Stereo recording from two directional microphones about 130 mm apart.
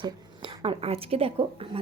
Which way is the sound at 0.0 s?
45° right (ahead or behind).